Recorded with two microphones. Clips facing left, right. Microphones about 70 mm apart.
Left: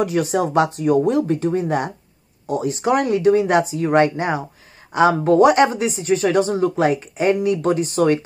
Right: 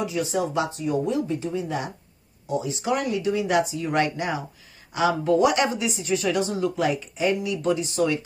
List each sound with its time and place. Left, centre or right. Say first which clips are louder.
0.0 s speech: left 6 dB; left